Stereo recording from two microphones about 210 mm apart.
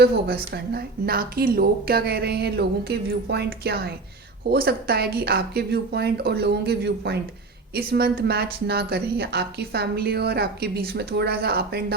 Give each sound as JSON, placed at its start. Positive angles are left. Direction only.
{"t": 0.0, "sound": "speech", "side_deg": -50}